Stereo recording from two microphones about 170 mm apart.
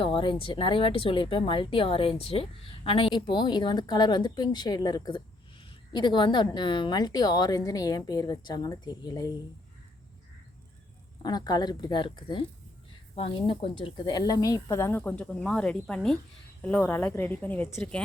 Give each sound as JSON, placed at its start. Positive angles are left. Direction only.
{"t": 0.0, "sound": "speech", "side_deg": 30}
{"t": 11.2, "sound": "speech", "side_deg": 25}